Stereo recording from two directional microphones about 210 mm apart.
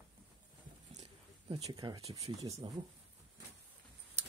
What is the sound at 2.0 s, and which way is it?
Speech, 30° right (ahead or behind).